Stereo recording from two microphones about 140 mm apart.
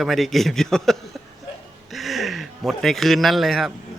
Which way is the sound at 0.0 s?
Centre (ahead or behind).